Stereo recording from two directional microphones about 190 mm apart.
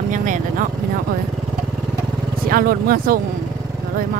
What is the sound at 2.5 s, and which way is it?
Speech, 50° right (ahead or behind).